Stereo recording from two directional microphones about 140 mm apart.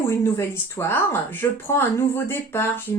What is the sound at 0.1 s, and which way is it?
Speech, 20° left (ahead or behind).